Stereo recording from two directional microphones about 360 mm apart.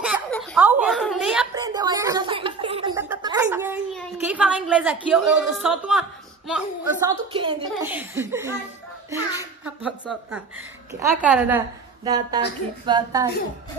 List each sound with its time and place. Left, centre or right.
0.0 s a sound: centre
5.1 s a woman's voice: centre
9.8 s a woman's voice: centre